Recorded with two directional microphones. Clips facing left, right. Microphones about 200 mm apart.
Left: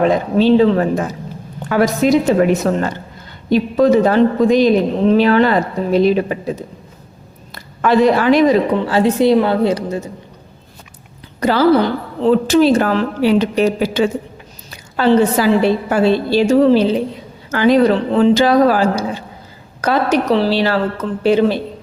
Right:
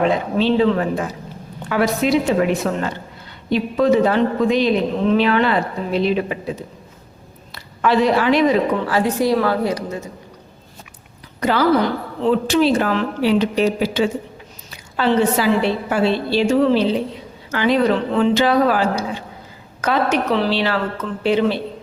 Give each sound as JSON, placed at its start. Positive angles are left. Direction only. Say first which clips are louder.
{"t": 0.0, "sound": "a woman's voice", "louder": "left 4 dB", "side_deg": 45}
{"t": 7.5, "sound": "a woman's voice", "louder": "left 3 dB", "side_deg": 45}
{"t": 8.9, "sound": "a woman's voice", "louder": "left 8 dB", "side_deg": 25}
{"t": 11.3, "sound": "a woman's voice", "louder": "left 4 dB", "side_deg": 35}